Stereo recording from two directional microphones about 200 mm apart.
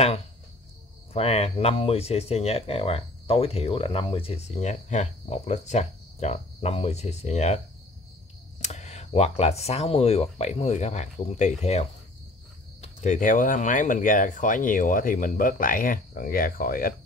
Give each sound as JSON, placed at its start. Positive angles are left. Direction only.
{"t": 1.1, "sound": "speech", "side_deg": 30}